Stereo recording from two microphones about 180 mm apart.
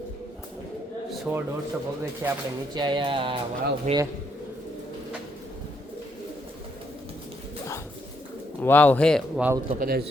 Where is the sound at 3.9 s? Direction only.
40° right (ahead or behind).